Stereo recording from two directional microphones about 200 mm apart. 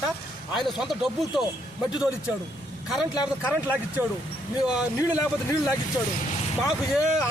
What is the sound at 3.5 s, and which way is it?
A man's voice, 10° right (ahead or behind).